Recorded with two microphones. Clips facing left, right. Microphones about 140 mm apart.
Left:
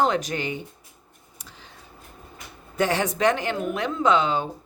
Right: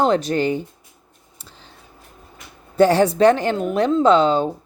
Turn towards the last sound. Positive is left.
turn(degrees=-35)  # may be behind; listen again after turning